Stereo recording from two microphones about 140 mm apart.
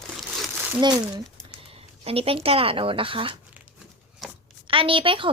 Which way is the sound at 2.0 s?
45° right (ahead or behind).